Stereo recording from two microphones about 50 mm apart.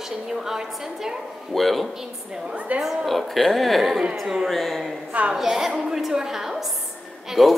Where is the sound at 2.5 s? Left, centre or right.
Right.